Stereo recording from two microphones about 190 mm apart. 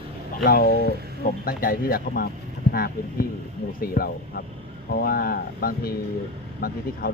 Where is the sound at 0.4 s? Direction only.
50° left (ahead or behind).